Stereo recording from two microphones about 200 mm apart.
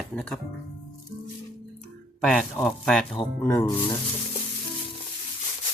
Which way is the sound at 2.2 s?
Centre (ahead or behind).